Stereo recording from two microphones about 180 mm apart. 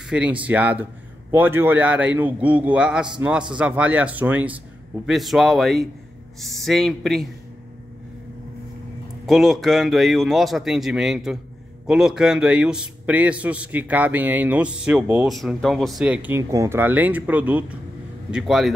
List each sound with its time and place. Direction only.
0.1 s a man's voice: 5° right (ahead or behind)
9.2 s a man's voice: centre (ahead or behind)